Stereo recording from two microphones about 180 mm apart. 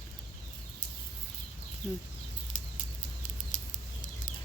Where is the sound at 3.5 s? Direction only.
45° left (ahead or behind).